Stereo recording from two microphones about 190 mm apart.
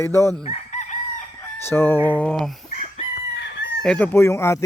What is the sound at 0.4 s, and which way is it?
Chicken, 35° left (ahead or behind).